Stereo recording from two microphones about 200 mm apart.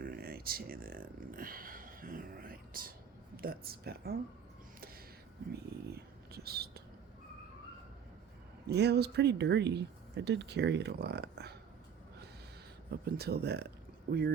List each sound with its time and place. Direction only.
0.0 s a sound: 50° right (ahead or behind)
3.3 s speech: 50° right (ahead or behind)
5.9 s whispering: 50° right (ahead or behind)
8.6 s speech: 55° right (ahead or behind)
12.9 s speech: 55° right (ahead or behind)